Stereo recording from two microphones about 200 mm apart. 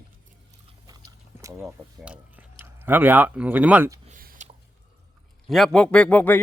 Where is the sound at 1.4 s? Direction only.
15° right (ahead or behind).